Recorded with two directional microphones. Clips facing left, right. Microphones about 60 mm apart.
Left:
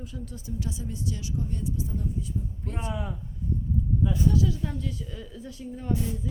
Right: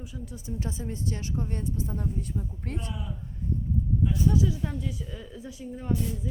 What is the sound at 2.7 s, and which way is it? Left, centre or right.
Speech, left.